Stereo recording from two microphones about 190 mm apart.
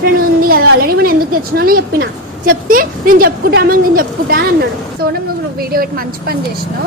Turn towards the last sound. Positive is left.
turn(degrees=-50)  # may be behind; listen again after turning